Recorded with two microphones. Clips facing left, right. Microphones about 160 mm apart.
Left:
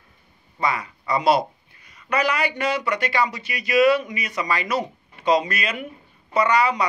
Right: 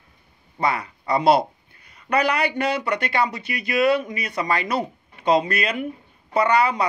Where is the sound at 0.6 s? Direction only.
60° right (ahead or behind).